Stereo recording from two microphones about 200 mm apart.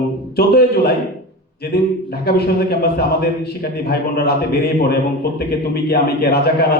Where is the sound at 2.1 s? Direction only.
50° left (ahead or behind).